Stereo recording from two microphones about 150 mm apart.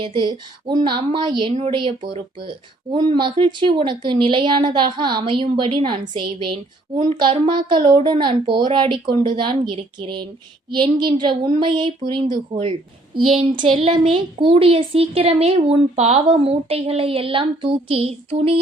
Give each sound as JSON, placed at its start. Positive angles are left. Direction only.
{"t": 0.0, "sound": "a woman's voice", "side_deg": -35}
{"t": 6.9, "sound": "a child's voice", "side_deg": -50}
{"t": 7.2, "sound": "a woman's voice", "side_deg": -30}